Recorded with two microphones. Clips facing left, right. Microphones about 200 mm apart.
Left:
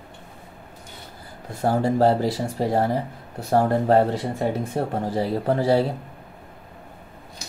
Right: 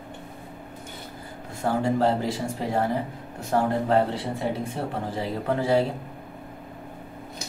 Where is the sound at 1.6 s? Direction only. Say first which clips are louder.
Left 4 dB; 35° left (ahead or behind).